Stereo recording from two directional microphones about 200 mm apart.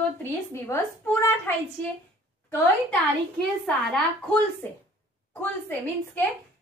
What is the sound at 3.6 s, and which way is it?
A woman's voice, 5° left (ahead or behind).